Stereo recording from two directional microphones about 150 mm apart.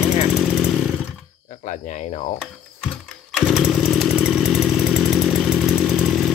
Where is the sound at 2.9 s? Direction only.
Centre (ahead or behind).